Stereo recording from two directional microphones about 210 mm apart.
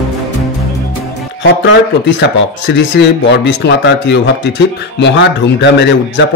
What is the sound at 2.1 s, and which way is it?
Speech, 55° left (ahead or behind).